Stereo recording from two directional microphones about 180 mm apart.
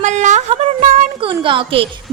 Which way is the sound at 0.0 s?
40° right (ahead or behind).